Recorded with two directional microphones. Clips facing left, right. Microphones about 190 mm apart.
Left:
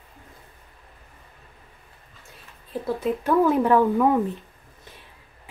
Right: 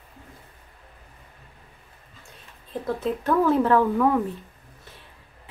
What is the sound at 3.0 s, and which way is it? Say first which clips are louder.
A woman's voice: left 2 dB; 10° left (ahead or behind).